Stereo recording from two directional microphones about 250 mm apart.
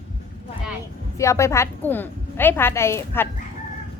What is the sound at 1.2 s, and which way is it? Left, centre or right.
A woman's voice, centre.